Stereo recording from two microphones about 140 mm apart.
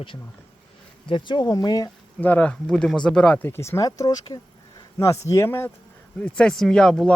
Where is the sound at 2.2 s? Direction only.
10° left (ahead or behind).